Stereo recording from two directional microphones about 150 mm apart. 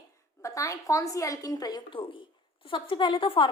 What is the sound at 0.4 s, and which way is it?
A woman's voice, 20° left (ahead or behind).